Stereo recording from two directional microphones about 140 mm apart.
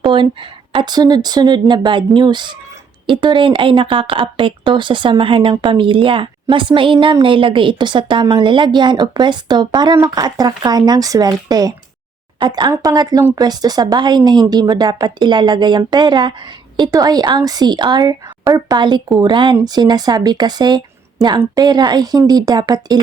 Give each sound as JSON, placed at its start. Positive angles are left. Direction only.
{"t": 0.0, "sound": "speech", "side_deg": -35}